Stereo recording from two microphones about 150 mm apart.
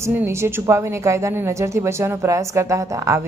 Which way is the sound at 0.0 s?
15° right (ahead or behind).